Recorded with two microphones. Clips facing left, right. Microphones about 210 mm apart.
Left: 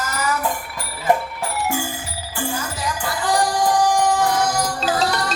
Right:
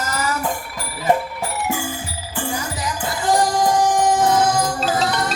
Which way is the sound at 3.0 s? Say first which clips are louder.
Right 2 dB; 20° right (ahead or behind).